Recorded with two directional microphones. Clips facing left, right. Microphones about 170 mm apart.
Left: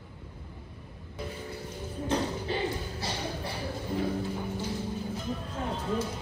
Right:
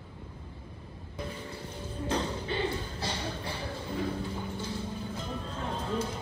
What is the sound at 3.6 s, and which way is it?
Music, 10° left (ahead or behind).